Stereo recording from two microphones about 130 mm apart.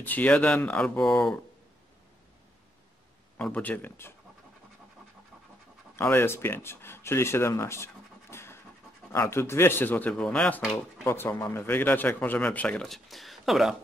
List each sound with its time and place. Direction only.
0.0 s speech: 10° left (ahead or behind)
3.3 s speech: 10° left (ahead or behind)
5.9 s speech: 15° left (ahead or behind)
11.1 s speech: 20° left (ahead or behind); by 13.7 s centre (ahead or behind)